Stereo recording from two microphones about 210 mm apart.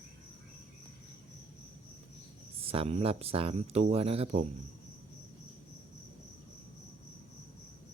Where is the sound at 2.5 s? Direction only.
25° right (ahead or behind).